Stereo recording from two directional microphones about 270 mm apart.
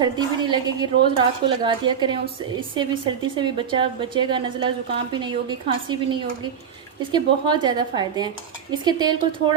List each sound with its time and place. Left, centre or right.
0.0 s a woman's voice: centre
3.3 s a woman's voice: centre